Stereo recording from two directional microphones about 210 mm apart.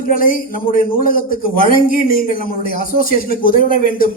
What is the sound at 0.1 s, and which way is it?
A man's voice, 40° left (ahead or behind).